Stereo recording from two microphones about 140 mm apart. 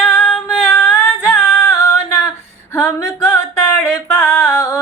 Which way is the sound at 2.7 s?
15° left (ahead or behind).